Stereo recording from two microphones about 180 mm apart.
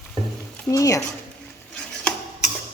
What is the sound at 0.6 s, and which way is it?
Speech, 20° left (ahead or behind).